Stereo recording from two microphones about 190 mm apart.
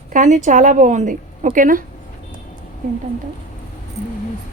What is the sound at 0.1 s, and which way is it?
A woman's voice, 40° right (ahead or behind).